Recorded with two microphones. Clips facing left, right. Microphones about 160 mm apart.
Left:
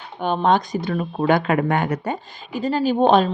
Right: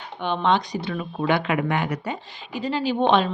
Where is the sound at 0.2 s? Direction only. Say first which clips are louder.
Left 3 dB; 40° left (ahead or behind).